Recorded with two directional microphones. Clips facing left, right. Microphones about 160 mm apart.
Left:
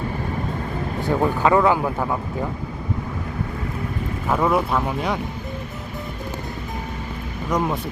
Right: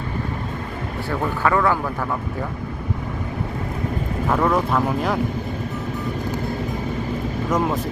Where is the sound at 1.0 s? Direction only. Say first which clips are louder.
Left 3 dB; 20° left (ahead or behind).